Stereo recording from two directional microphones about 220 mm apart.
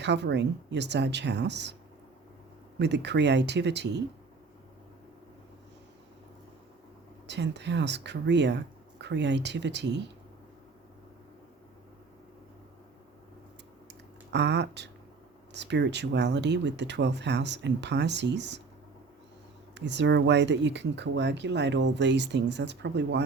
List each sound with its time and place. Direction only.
0.0 s speech: 50° right (ahead or behind)
2.7 s speech: 50° right (ahead or behind)
7.3 s speech: 50° right (ahead or behind)
14.3 s speech: 50° right (ahead or behind)
19.7 s speech: 50° right (ahead or behind)